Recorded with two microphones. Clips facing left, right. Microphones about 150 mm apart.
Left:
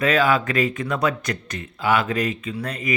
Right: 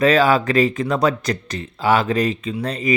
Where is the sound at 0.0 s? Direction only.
35° right (ahead or behind).